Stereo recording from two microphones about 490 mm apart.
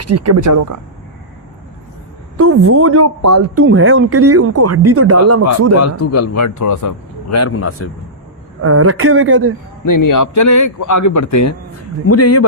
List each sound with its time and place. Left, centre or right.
0.0 s speech: right
2.4 s speech: right
5.8 s speech: left
8.6 s speech: right
9.8 s speech: left